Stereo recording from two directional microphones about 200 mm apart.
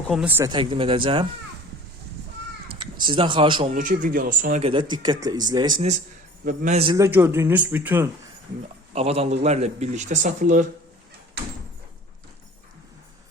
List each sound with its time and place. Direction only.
0.1 s speech: 5° right (ahead or behind)
0.5 s speech: 25° right (ahead or behind)
2.7 s speech: 25° right (ahead or behind)
3.8 s a man's voice: 40° right (ahead or behind)
4.7 s speech: 20° right (ahead or behind)
6.4 s a man's voice: 45° right (ahead or behind)
6.9 s speech: 10° right (ahead or behind)
8.9 s a man's voice: 30° right (ahead or behind)